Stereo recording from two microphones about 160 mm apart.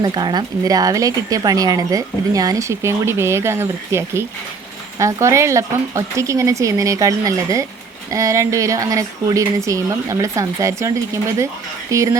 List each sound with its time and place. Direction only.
0.0 s a woman's voice: 25° right (ahead or behind)